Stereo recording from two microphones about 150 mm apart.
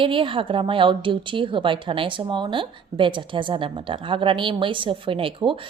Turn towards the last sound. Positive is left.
turn(degrees=-35)  # may be behind; listen again after turning